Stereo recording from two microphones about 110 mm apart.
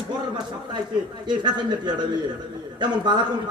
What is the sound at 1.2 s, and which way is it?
A man's voice, 45° right (ahead or behind).